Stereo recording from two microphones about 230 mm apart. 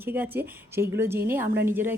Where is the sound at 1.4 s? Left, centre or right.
Right.